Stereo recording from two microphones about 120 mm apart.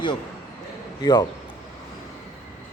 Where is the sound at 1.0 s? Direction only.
35° left (ahead or behind).